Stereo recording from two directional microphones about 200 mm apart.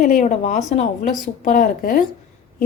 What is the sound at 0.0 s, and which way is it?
Speech, 35° left (ahead or behind).